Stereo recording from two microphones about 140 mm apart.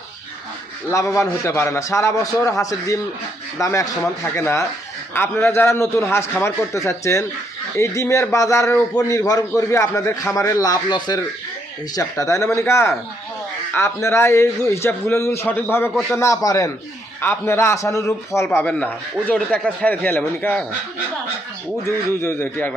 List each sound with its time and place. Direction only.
0.9 s a man's voice: 20° left (ahead or behind)
21.8 s a man's voice: 15° left (ahead or behind)